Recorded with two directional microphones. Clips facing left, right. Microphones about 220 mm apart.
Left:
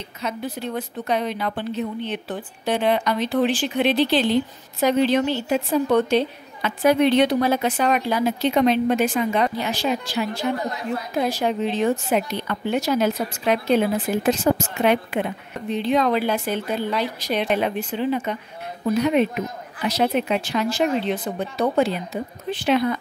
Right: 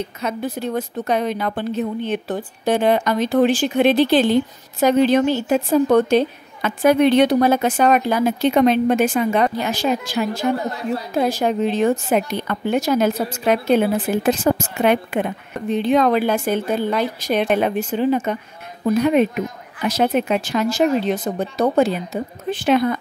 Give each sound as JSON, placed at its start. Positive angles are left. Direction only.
{"t": 0.2, "sound": "a woman's voice", "side_deg": -50}